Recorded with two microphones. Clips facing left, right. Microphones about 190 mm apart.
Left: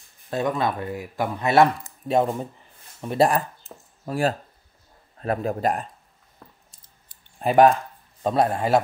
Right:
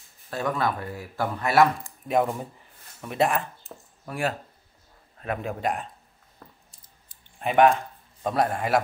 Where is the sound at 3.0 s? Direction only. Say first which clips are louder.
Left 4 dB; 35° left (ahead or behind).